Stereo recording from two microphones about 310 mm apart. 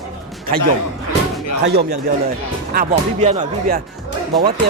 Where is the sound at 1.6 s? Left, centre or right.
Right.